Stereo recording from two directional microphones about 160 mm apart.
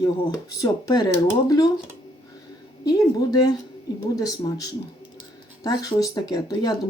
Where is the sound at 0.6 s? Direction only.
25° left (ahead or behind).